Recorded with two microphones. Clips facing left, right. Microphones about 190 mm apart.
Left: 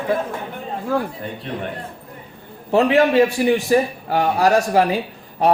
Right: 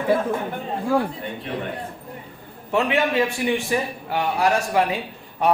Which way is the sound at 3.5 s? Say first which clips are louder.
Left 6 dB; 40° left (ahead or behind).